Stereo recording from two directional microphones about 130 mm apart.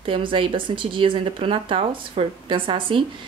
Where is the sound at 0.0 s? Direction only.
40° right (ahead or behind).